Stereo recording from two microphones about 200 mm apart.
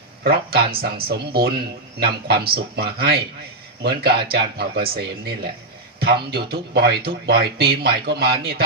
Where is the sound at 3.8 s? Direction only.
55° right (ahead or behind).